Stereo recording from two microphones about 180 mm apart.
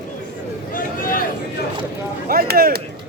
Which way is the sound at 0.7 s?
50° left (ahead or behind).